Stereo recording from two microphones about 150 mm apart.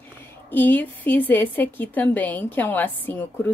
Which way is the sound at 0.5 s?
10° left (ahead or behind).